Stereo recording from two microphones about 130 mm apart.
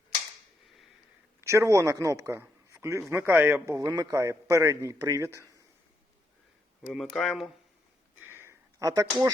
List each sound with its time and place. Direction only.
1.4 s a man's voice: 20° right (ahead or behind)
3.8 s a man's voice: 35° right (ahead or behind)
6.9 s speech: centre (ahead or behind)
8.2 s a sound: 15° right (ahead or behind)